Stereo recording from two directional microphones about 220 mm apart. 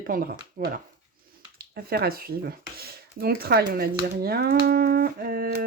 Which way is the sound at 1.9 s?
45° right (ahead or behind).